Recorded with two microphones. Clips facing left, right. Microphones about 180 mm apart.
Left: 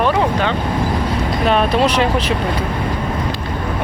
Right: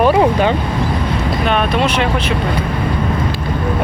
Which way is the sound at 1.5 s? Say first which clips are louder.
Left 2 dB; 35° left (ahead or behind).